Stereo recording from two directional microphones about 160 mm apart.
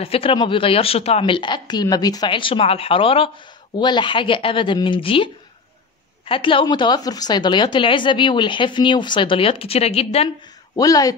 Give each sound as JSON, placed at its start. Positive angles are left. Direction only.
{"t": 0.0, "sound": "a woman's voice", "side_deg": 35}
{"t": 10.8, "sound": "speech", "side_deg": 20}